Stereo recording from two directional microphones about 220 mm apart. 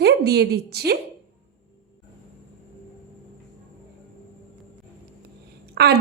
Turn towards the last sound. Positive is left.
turn(degrees=-50)  # may be behind; listen again after turning